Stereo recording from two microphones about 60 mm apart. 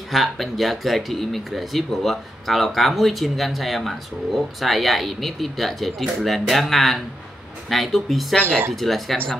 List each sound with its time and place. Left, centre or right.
0.1 s speech: centre
8.5 s speech: right
8.7 s speech: centre